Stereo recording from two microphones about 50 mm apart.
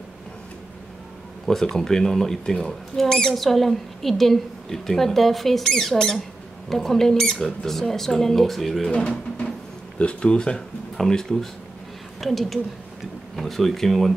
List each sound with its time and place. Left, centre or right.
1.4 s speech: centre
9.9 s speech: left; by 14.1 s centre